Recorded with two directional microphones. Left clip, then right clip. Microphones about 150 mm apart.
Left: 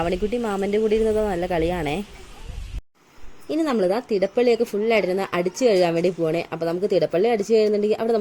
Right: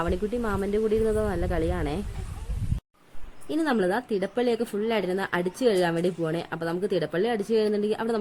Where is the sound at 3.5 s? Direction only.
Centre (ahead or behind).